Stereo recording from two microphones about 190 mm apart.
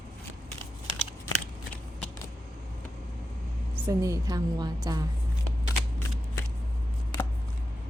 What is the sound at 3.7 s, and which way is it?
A woman's voice, 15° right (ahead or behind).